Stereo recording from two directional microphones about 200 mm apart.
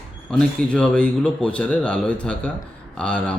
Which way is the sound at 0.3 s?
5° left (ahead or behind).